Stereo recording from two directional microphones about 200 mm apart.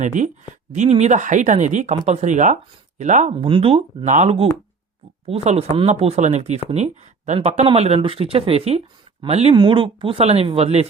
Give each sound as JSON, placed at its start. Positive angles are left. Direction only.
{"t": 0.0, "sound": "speech", "side_deg": -40}
{"t": 3.3, "sound": "speech", "side_deg": -25}